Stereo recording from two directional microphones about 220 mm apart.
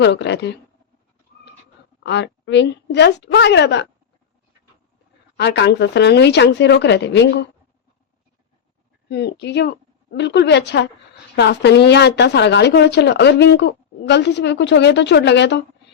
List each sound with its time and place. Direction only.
0.0 s speech: 50° left (ahead or behind)
2.0 s speech: 50° left (ahead or behind)
5.4 s speech: 50° left (ahead or behind)
9.0 s a woman's voice: 50° left (ahead or behind)